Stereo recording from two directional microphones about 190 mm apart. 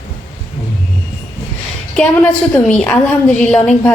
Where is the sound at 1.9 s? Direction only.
10° left (ahead or behind).